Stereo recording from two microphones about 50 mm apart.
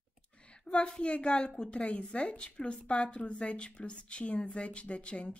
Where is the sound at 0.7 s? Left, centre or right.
Centre.